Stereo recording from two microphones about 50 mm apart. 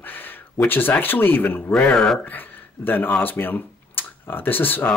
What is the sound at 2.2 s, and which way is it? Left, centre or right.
Speech, left.